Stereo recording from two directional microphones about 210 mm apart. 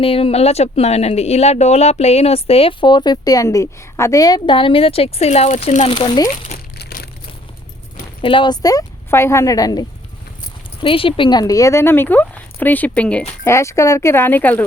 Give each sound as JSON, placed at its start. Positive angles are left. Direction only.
{"t": 0.0, "sound": "speech", "side_deg": 25}
{"t": 6.7, "sound": "crushing", "side_deg": 50}
{"t": 8.2, "sound": "speech", "side_deg": 25}